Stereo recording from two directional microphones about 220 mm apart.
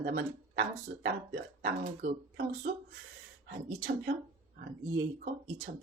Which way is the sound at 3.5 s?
45° right (ahead or behind).